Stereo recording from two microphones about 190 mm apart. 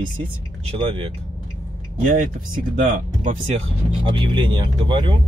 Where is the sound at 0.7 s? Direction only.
30° right (ahead or behind).